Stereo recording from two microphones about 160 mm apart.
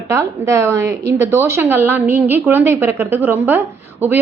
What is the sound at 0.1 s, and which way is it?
Speech, 20° right (ahead or behind).